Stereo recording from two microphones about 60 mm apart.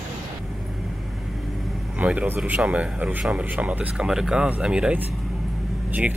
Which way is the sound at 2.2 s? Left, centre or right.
Right.